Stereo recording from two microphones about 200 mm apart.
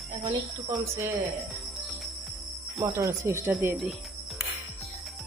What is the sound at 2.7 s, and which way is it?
Speech, 15° right (ahead or behind).